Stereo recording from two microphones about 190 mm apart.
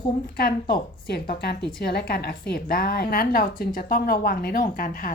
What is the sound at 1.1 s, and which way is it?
A woman's voice, 55° left (ahead or behind).